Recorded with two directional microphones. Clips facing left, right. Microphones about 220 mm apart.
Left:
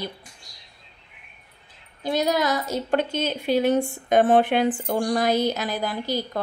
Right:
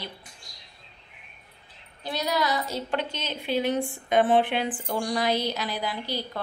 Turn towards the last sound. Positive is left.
turn(degrees=45)  # may be behind; listen again after turning